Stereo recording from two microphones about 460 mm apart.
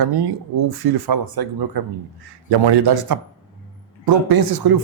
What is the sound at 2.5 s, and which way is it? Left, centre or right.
A man's voice, right.